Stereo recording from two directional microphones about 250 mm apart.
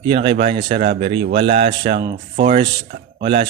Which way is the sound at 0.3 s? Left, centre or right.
Right.